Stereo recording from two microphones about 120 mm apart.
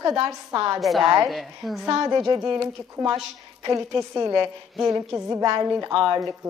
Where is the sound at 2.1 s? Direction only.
30° right (ahead or behind).